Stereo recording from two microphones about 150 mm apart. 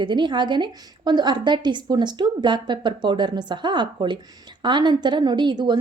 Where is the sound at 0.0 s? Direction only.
30° right (ahead or behind).